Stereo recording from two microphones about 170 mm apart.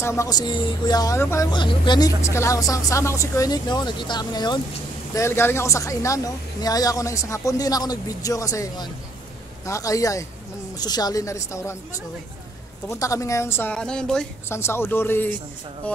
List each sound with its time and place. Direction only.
0.0 s speech: 15° left (ahead or behind)
12.8 s a woman's voice: 20° left (ahead or behind)
14.5 s a woman's voice: 15° left (ahead or behind)